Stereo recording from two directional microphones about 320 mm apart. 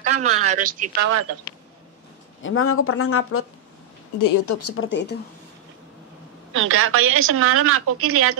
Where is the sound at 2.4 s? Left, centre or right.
Left.